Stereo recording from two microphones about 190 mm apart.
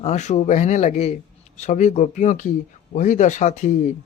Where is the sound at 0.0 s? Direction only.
40° left (ahead or behind).